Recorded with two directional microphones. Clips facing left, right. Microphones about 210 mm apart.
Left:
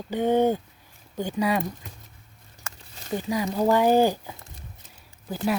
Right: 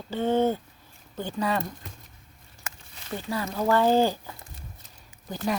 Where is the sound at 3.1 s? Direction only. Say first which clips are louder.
Left 4 dB; 15° left (ahead or behind).